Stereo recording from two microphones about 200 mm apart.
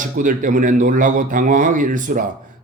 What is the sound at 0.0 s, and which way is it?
A man's voice, 40° right (ahead or behind).